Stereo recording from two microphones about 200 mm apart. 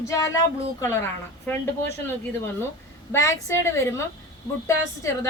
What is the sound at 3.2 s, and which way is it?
Speech, 15° left (ahead or behind).